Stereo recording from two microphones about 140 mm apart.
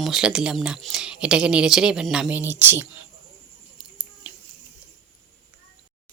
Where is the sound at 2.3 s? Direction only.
15° right (ahead or behind).